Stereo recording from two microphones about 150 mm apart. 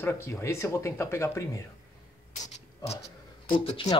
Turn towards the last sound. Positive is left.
turn(degrees=35)  # may be behind; listen again after turning